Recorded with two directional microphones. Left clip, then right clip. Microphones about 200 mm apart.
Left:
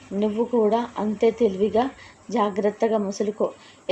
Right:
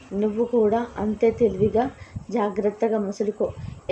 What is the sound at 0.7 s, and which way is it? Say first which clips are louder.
Speech: left 1 dB; 15° left (ahead or behind).